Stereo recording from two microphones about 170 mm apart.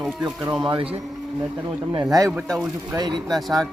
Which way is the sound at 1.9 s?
20° right (ahead or behind).